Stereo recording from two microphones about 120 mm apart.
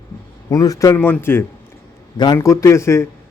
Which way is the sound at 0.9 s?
20° left (ahead or behind).